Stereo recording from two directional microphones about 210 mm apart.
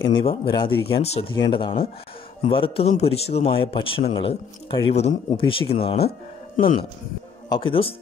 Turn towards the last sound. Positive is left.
turn(degrees=25)  # may be behind; listen again after turning